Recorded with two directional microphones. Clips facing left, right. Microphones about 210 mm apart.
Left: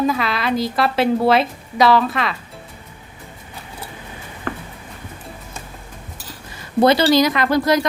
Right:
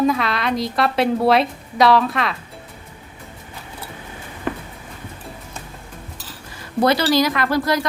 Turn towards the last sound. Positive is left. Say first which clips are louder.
# left 3 dB
turn(degrees=20)  # may be behind; listen again after turning